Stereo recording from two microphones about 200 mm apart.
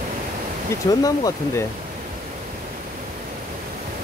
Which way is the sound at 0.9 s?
15° left (ahead or behind).